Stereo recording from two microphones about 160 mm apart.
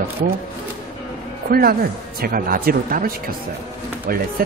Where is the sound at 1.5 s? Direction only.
70° right (ahead or behind).